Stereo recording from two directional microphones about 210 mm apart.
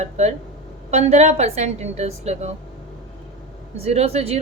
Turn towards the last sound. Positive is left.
turn(degrees=-30)  # may be behind; listen again after turning